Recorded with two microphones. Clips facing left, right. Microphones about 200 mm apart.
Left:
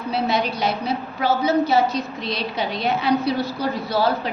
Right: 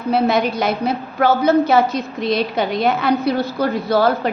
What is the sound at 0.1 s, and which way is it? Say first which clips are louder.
A woman's voice: right 6 dB; 50° right (ahead or behind).